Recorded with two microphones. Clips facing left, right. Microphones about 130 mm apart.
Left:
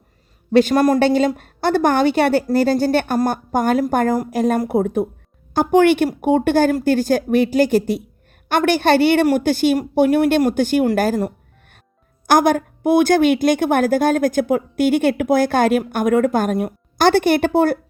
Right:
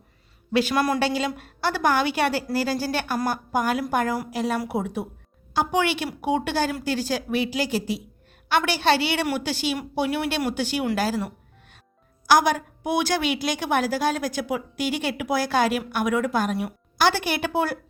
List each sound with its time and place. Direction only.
0.5 s a woman's voice: 50° left (ahead or behind)